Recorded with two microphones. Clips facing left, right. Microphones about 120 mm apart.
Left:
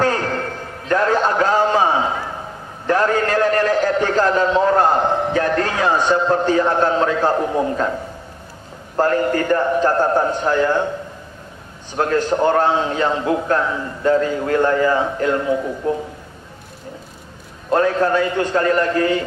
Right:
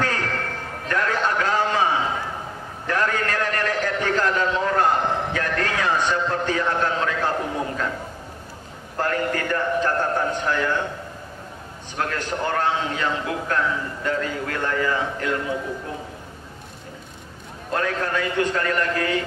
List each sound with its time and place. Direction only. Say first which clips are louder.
0.0 s a sound: left 6 dB; 30° left (ahead or behind)
2.9 s a man's voice: left 7 dB; 30° left (ahead or behind)
8.9 s a man's voice: left 7 dB; 30° left (ahead or behind)
12.0 s a man's voice: left 9 dB; 30° left (ahead or behind)
17.6 s a man's voice: left 9 dB; 30° left (ahead or behind)